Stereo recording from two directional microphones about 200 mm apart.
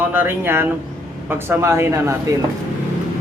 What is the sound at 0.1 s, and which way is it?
Speech, 10° right (ahead or behind).